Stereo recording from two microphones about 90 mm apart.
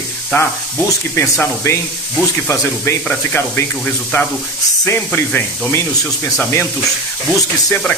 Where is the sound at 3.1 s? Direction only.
25° left (ahead or behind).